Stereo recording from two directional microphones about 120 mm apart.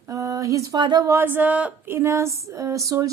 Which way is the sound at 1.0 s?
20° right (ahead or behind).